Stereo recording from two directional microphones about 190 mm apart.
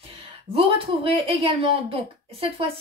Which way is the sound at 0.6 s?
30° right (ahead or behind).